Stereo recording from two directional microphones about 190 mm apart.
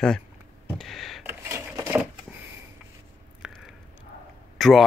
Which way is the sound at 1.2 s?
10° right (ahead or behind).